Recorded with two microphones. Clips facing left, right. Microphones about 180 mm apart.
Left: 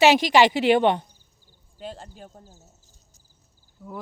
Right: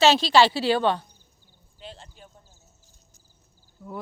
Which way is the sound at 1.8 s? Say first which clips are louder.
Left 6 dB; 45° left (ahead or behind).